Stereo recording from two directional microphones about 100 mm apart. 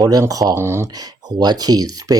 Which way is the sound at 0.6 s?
25° right (ahead or behind).